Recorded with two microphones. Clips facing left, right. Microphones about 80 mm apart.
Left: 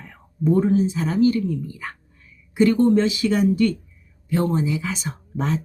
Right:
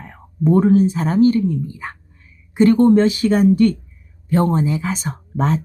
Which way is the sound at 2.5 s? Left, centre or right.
Right.